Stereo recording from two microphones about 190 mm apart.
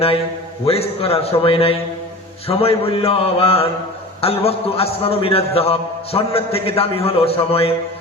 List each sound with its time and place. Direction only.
0.6 s a man's voice: 30° left (ahead or behind)